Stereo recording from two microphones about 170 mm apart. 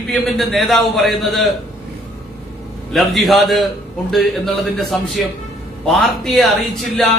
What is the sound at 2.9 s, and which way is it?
A man's voice, centre (ahead or behind).